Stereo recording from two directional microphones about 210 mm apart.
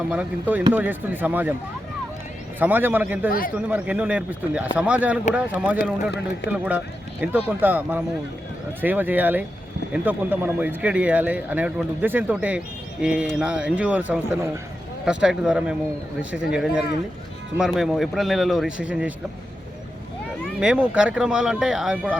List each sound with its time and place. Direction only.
0.1 s speech: 5° right (ahead or behind)
2.6 s speech: 10° right (ahead or behind)
3.2 s a man's voice: 40° left (ahead or behind)
3.5 s speech: 5° right (ahead or behind)
20.4 s speech: 5° right (ahead or behind)